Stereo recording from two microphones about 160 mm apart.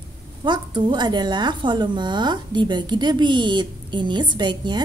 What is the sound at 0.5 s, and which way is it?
A woman's voice, 30° right (ahead or behind).